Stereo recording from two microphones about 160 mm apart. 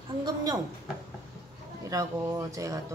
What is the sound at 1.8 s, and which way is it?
Speech, 20° right (ahead or behind).